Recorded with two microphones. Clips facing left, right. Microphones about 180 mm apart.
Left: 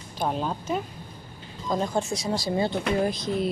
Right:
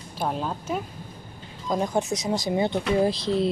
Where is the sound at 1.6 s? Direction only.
15° right (ahead or behind).